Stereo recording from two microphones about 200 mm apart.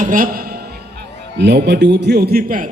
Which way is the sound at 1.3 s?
60° right (ahead or behind).